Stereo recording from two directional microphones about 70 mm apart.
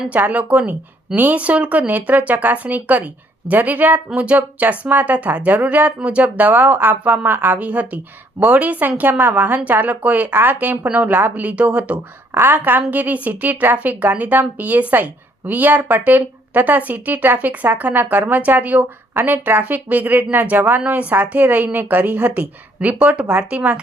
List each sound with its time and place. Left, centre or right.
0.1 s speech: centre